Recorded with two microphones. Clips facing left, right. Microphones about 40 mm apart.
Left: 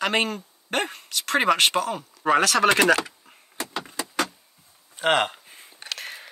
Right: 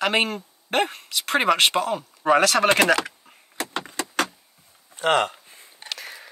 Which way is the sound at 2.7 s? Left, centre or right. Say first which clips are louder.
Left 1 dB; centre.